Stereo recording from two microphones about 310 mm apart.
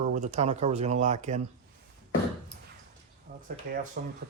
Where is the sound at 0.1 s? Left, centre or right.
Right.